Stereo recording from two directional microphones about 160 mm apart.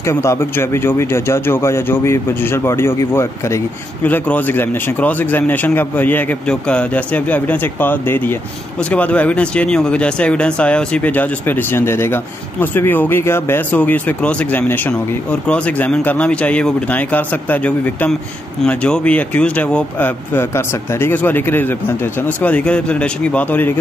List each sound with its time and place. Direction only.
0.0 s speech: 15° left (ahead or behind)